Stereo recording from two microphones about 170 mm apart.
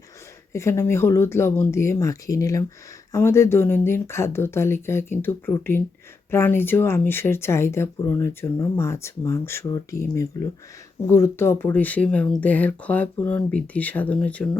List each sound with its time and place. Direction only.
0.5 s speech: 15° left (ahead or behind)